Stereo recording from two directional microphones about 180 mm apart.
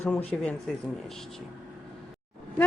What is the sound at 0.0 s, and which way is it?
Speech, 10° left (ahead or behind).